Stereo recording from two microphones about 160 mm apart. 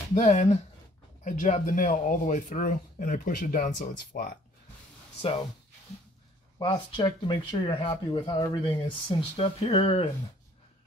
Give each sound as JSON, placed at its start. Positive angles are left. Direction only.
{"t": 0.1, "sound": "speech", "side_deg": 50}
{"t": 6.6, "sound": "speech", "side_deg": 30}